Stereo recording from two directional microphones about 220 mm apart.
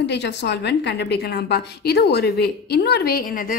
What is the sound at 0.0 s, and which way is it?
A woman's voice, 50° left (ahead or behind).